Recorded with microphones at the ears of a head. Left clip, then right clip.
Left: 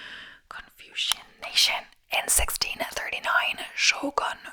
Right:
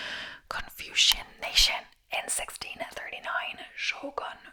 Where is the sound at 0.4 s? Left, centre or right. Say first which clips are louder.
Right 6 dB; right.